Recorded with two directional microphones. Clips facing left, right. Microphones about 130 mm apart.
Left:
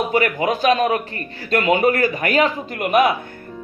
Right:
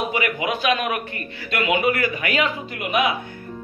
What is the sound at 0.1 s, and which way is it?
A man's voice, 45° left (ahead or behind).